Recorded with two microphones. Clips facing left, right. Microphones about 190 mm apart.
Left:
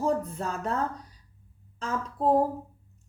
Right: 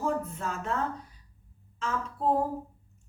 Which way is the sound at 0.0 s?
35° left (ahead or behind).